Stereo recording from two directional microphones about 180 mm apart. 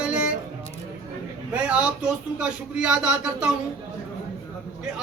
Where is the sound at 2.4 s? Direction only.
5° right (ahead or behind).